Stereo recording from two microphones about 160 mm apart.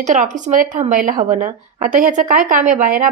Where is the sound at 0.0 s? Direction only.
50° right (ahead or behind).